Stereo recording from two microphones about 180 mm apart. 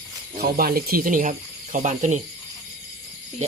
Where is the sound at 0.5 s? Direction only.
55° right (ahead or behind).